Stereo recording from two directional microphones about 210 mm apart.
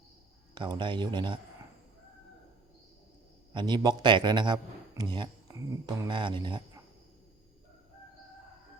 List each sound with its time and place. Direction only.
0.5 s a man's voice: 20° right (ahead or behind)
3.5 s a man's voice: 20° right (ahead or behind)